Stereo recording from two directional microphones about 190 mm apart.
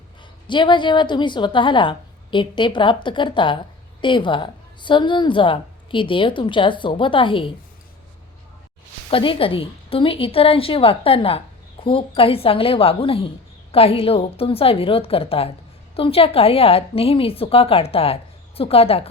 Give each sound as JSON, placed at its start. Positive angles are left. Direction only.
{"t": 0.2, "sound": "a woman's voice", "side_deg": 25}
{"t": 9.0, "sound": "a woman's voice", "side_deg": 30}